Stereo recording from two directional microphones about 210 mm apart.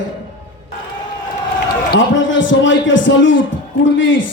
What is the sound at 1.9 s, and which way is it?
Speech, 65° left (ahead or behind).